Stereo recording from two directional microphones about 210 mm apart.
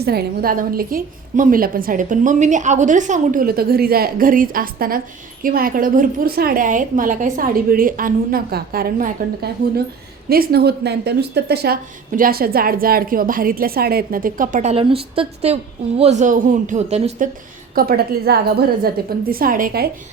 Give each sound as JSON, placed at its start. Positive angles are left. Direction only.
{"t": 0.0, "sound": "a woman's voice", "side_deg": -50}
{"t": 17.7, "sound": "a woman's voice", "side_deg": -45}